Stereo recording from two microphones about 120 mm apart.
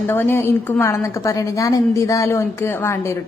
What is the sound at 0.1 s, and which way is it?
A woman's voice, 20° left (ahead or behind).